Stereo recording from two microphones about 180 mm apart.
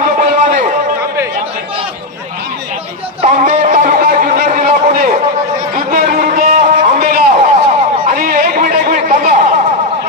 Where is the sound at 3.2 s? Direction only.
45° right (ahead or behind).